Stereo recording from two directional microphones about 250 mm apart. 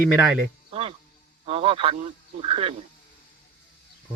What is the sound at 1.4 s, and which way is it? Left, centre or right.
Speech, right.